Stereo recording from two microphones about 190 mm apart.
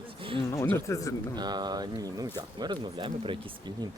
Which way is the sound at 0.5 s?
15° left (ahead or behind).